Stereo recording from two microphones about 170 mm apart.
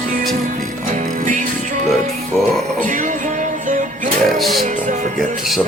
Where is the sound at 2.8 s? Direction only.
50° right (ahead or behind).